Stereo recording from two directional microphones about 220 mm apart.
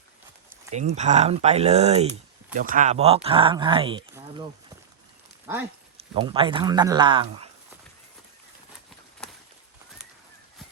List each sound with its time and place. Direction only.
0.7 s speech: 30° right (ahead or behind)
6.0 s speech: 25° right (ahead or behind)